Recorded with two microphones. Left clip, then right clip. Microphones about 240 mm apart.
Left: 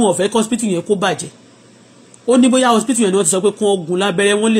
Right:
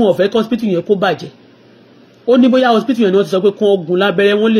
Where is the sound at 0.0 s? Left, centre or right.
Centre.